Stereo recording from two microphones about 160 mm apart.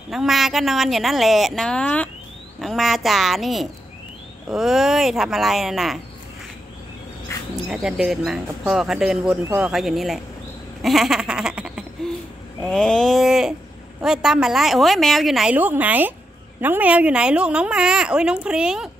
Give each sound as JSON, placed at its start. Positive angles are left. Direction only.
{"t": 0.1, "sound": "a woman's voice", "side_deg": 0}
{"t": 7.3, "sound": "insect", "side_deg": 20}
{"t": 7.7, "sound": "a woman's voice", "side_deg": -5}
{"t": 10.8, "sound": "a sound", "side_deg": 0}
{"t": 12.6, "sound": "a woman's voice", "side_deg": 5}